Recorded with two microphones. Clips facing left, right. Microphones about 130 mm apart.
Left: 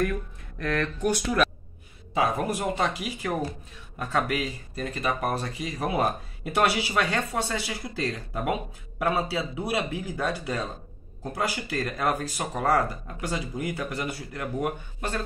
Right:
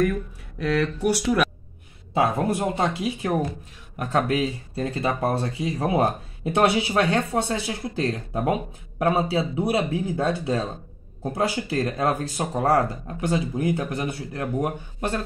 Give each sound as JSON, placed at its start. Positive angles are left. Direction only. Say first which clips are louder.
{"t": 0.0, "sound": "speech", "louder": "right 4 dB", "side_deg": -10}
{"t": 2.1, "sound": "speech", "louder": "right 4 dB", "side_deg": -25}